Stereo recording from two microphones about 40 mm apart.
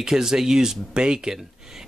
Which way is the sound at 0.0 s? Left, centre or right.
Centre.